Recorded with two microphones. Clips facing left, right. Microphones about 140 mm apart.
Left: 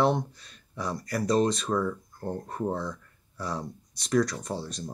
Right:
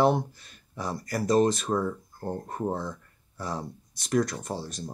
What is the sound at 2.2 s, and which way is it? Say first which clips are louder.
Speech: even; 5° right (ahead or behind).